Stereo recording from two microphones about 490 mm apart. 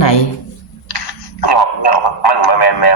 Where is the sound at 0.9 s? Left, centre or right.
Left.